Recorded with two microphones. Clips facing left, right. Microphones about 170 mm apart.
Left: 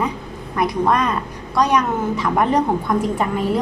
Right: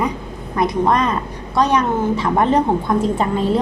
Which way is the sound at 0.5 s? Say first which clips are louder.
Right 1 dB; 20° right (ahead or behind).